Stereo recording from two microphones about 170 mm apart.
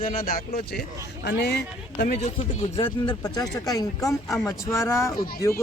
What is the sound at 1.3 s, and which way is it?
Speech, 85° left.